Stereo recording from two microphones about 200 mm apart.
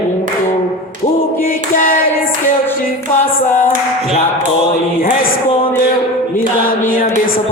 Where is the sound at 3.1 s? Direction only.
40° left (ahead or behind).